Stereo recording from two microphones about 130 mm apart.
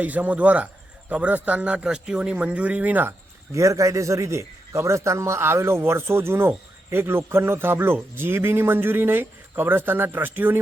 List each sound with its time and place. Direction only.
0.0 s a man's voice: 10° right (ahead or behind)